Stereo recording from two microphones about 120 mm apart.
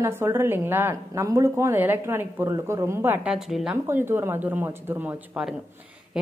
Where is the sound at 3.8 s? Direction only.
20° right (ahead or behind).